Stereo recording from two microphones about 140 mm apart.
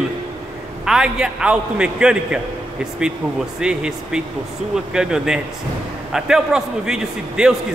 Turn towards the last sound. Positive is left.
turn(degrees=-5)  # may be behind; listen again after turning